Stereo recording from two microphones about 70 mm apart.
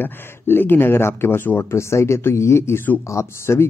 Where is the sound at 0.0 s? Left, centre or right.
Left.